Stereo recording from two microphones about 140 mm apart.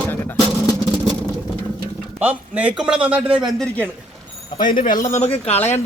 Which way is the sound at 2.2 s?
10° right (ahead or behind).